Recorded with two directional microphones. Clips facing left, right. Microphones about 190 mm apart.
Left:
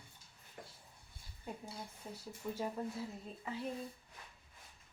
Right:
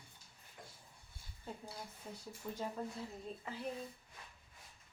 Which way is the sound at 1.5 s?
15° left (ahead or behind).